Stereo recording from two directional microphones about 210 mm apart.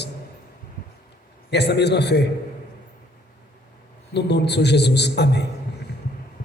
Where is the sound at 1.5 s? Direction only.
55° left (ahead or behind).